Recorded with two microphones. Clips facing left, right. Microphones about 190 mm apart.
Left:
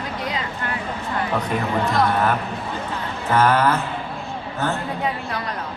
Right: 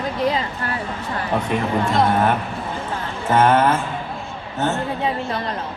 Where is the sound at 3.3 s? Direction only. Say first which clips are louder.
Right 2 dB; 25° right (ahead or behind).